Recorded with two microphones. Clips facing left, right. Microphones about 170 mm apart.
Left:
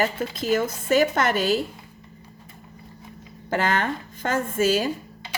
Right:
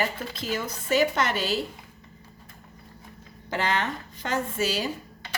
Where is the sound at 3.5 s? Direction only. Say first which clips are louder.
Left 4 dB; 50° left (ahead or behind).